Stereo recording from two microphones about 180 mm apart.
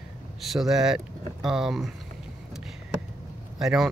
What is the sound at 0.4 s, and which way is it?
Speech, centre (ahead or behind).